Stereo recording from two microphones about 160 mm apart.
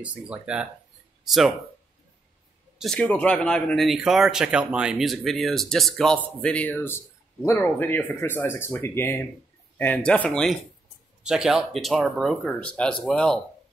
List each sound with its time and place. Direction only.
0.0 s speech: 5° right (ahead or behind)
2.8 s speech: 5° left (ahead or behind)